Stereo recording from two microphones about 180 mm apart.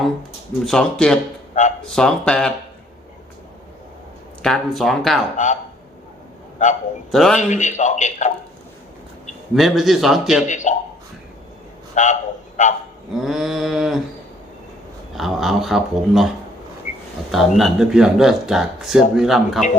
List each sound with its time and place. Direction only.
0.6 s speech: 5° left (ahead or behind)
4.4 s speech: centre (ahead or behind)
6.6 s a man's voice: 45° left (ahead or behind)
7.1 s speech: centre (ahead or behind)
7.3 s a man's voice: 40° left (ahead or behind)
9.6 s speech: centre (ahead or behind)
10.4 s a man's voice: 45° left (ahead or behind)
12.0 s a man's voice: 40° left (ahead or behind)
13.1 s a sound: centre (ahead or behind)
15.1 s speech: centre (ahead or behind)
17.3 s speech: centre (ahead or behind)